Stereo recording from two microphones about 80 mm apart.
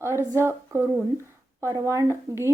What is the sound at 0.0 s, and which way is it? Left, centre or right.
Speech, right.